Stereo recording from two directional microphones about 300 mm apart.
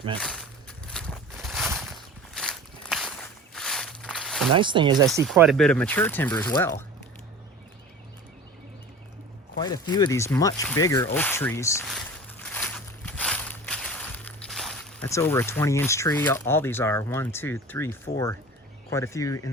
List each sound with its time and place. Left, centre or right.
0.2 s a sound: centre
3.5 s walk: centre
4.5 s speech: centre
5.2 s speech: centre
9.6 s speech: centre
12.4 s a sound: centre
18.9 s speech: centre